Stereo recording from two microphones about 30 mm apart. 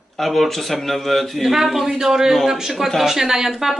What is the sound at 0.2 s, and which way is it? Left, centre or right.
A man's voice, centre.